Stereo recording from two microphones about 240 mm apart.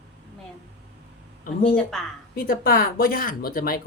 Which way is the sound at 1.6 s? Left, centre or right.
Centre.